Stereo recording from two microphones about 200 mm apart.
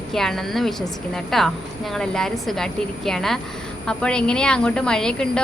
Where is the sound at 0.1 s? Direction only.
Centre (ahead or behind).